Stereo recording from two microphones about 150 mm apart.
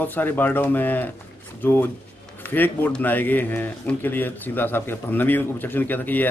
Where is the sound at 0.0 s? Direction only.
10° left (ahead or behind).